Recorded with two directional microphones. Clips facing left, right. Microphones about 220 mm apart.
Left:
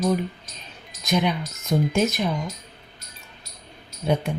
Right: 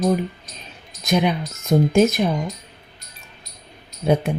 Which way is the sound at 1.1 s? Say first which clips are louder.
Right 3 dB; 50° right (ahead or behind).